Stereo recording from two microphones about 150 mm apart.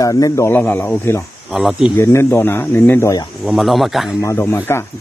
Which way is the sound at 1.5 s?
5° right (ahead or behind).